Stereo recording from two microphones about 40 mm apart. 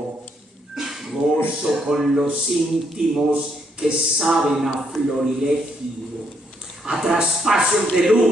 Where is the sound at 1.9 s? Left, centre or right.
Centre.